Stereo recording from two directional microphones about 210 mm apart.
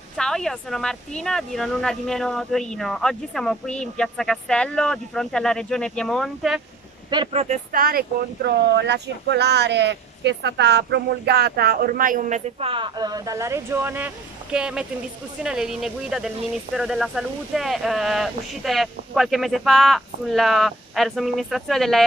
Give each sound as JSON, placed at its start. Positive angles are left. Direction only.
{"t": 0.2, "sound": "speech", "side_deg": 5}
{"t": 7.1, "sound": "speech", "side_deg": -25}